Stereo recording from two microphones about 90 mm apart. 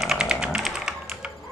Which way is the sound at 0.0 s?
5° right (ahead or behind).